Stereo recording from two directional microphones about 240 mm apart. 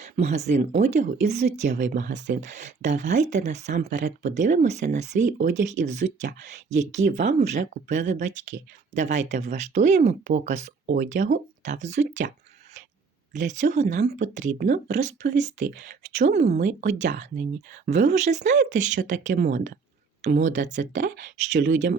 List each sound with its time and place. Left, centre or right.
0.0 s speech: right
8.4 s speech: right
8.9 s speech: right
13.5 s speech: right
14.1 s speech: right
20.9 s speech: right